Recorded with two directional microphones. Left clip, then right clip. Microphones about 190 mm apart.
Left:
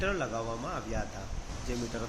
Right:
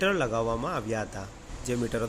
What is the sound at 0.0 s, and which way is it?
Speech, 60° right (ahead or behind).